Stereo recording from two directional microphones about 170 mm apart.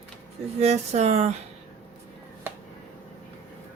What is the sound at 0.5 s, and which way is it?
Speech, 40° right (ahead or behind).